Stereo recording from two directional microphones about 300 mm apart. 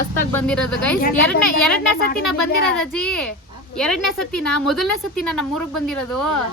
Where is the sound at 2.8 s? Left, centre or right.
Centre.